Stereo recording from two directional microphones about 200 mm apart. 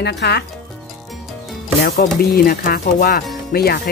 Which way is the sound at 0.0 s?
60° left (ahead or behind).